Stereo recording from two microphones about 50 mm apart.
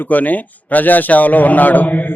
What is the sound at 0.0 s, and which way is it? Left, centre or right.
A man's voice, left.